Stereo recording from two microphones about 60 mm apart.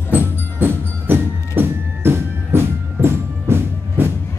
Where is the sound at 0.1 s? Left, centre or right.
Right.